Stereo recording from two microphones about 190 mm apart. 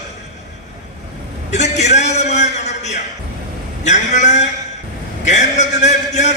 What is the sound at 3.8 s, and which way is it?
A man's voice, 40° left (ahead or behind).